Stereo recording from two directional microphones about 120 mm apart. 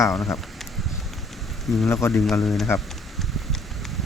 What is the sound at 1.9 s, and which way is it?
Speech, 20° left (ahead or behind).